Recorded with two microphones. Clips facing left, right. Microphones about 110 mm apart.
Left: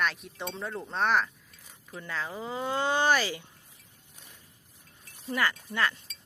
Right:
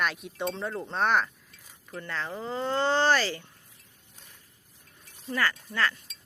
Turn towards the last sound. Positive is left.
turn(degrees=15)  # may be behind; listen again after turning